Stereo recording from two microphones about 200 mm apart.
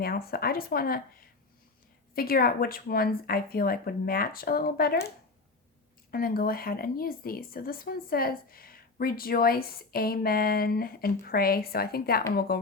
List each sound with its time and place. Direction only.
0.0 s speech: 50° left (ahead or behind)
6.1 s speech: 50° left (ahead or behind)